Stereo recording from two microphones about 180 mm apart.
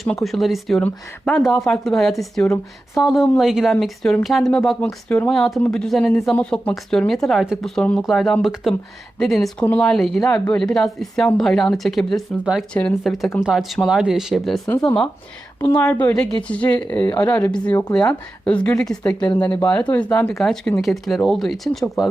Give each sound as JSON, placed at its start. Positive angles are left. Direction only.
{"t": 0.0, "sound": "speech", "side_deg": 0}
{"t": 15.6, "sound": "speech", "side_deg": 15}
{"t": 19.2, "sound": "speech", "side_deg": 25}
{"t": 19.8, "sound": "speech", "side_deg": 5}